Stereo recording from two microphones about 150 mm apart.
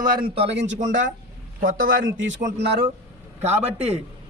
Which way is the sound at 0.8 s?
60° right (ahead or behind).